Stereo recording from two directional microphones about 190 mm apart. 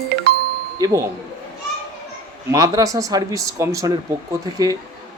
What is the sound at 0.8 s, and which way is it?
Speech, 20° right (ahead or behind).